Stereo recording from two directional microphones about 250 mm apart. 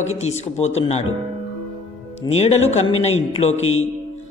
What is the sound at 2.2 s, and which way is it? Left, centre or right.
A man's voice, left.